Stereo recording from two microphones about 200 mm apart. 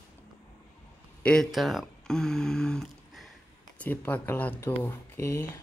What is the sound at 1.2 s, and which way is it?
Speech, 5° left (ahead or behind).